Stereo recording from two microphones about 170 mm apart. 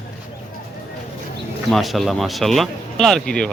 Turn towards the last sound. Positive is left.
turn(degrees=5)  # may be behind; listen again after turning